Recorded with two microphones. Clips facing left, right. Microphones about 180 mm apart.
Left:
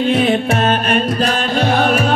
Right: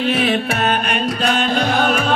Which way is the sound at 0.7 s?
40° left (ahead or behind).